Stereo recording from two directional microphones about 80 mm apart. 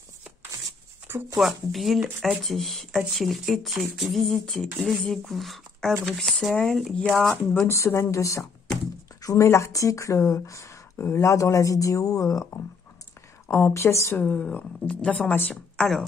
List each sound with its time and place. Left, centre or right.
1.3 s speech: centre
7.6 s speech: left
11.0 s speech: left
11.2 s speech: left
13.5 s speech: left
14.1 s speech: centre
15.7 s a sound: centre